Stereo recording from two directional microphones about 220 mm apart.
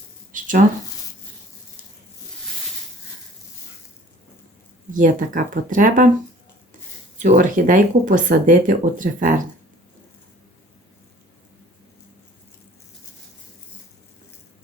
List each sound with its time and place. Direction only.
0.3 s a sound: 35° right (ahead or behind)
4.9 s speech: 35° right (ahead or behind)
7.2 s speech: 35° right (ahead or behind)